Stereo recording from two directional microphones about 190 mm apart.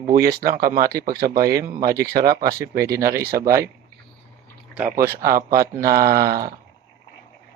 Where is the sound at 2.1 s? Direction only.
55° right (ahead or behind).